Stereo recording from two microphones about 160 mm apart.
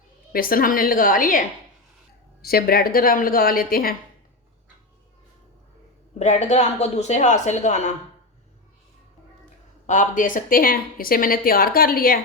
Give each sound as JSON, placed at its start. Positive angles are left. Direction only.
{"t": 0.3, "sound": "a woman's voice", "side_deg": 65}
{"t": 2.4, "sound": "a woman's voice", "side_deg": 70}
{"t": 6.1, "sound": "speech", "side_deg": 45}
{"t": 9.8, "sound": "a woman's voice", "side_deg": 50}